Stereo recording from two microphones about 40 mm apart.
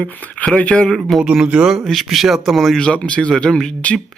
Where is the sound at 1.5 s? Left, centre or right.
Right.